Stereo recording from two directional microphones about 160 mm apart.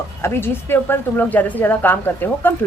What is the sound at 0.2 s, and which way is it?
A woman's voice, 15° left (ahead or behind).